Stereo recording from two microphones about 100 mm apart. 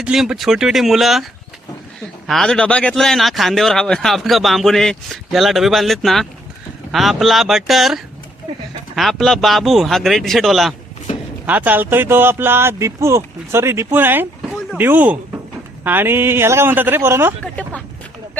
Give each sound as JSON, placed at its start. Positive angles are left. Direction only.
{"t": 0.0, "sound": "speech", "side_deg": -10}
{"t": 11.4, "sound": "speech", "side_deg": -15}